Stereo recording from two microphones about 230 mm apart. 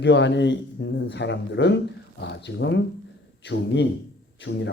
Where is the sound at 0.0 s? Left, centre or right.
Left.